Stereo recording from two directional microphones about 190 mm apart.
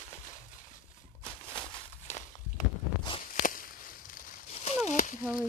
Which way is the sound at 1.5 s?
25° left (ahead or behind).